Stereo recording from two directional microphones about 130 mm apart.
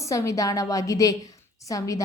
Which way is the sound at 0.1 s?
25° left (ahead or behind).